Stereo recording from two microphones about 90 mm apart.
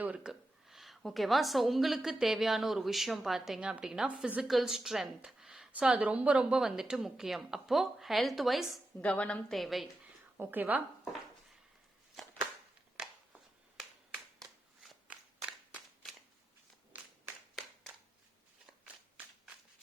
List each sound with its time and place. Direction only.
0.0 s a woman's voice: 10° right (ahead or behind)
9.0 s a woman's voice: 15° left (ahead or behind)
9.5 s speech: centre (ahead or behind)
10.3 s a woman's voice: 20° right (ahead or behind)
13.0 s a sound: 10° right (ahead or behind)
15.1 s cap gun: 10° right (ahead or behind)
18.9 s a sound: 15° right (ahead or behind)